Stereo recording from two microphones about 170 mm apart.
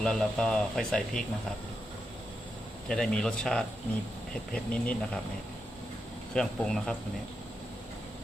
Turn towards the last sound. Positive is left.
turn(degrees=5)  # may be behind; listen again after turning